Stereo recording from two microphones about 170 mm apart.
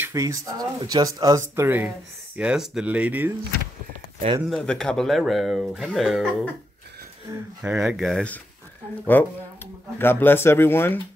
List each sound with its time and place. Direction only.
0.0 s speech: 20° right (ahead or behind)
4.5 s speech: centre (ahead or behind)
7.6 s speech: 5° right (ahead or behind); by 11.0 s 15° left (ahead or behind)